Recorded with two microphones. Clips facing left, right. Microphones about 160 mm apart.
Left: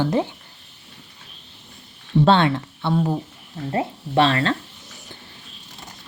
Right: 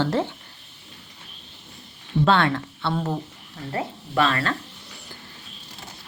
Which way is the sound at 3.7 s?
25° left (ahead or behind).